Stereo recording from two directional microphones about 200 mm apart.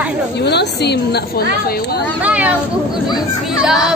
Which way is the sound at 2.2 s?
5° right (ahead or behind).